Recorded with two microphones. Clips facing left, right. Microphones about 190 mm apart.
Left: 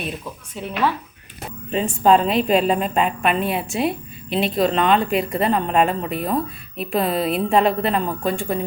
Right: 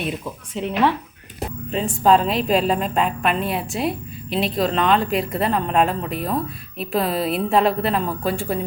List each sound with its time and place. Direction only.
0.5 s speech: 20° right (ahead or behind)
1.7 s a woman's voice: centre (ahead or behind)